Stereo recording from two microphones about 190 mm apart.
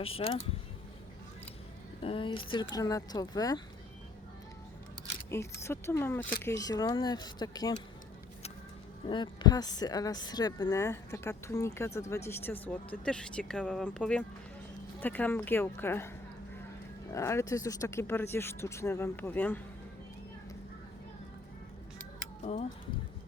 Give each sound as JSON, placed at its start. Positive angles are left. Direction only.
{"t": 0.0, "sound": "speech", "side_deg": 30}
{"t": 2.0, "sound": "speech", "side_deg": 30}
{"t": 5.3, "sound": "speech", "side_deg": 15}
{"t": 9.0, "sound": "speech", "side_deg": 25}